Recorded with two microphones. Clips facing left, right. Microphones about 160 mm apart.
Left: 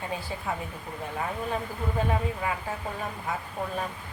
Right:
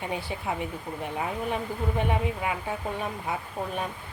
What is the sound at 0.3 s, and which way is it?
Speech, 20° right (ahead or behind).